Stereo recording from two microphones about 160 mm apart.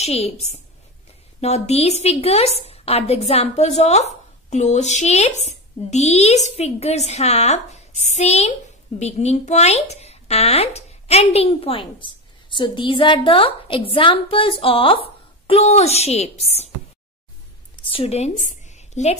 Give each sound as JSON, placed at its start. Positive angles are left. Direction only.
{"t": 0.0, "sound": "a woman's voice", "side_deg": 40}
{"t": 17.8, "sound": "a woman's voice", "side_deg": 35}